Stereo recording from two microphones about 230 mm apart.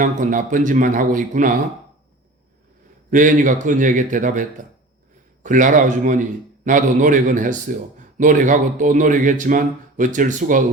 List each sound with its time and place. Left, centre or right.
0.0 s a man's voice: right
3.1 s a man's voice: right